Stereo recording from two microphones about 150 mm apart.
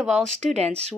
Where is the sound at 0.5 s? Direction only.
45° right (ahead or behind).